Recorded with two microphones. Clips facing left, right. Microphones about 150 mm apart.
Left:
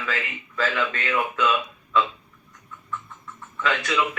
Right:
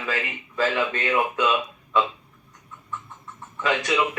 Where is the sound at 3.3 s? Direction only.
20° right (ahead or behind).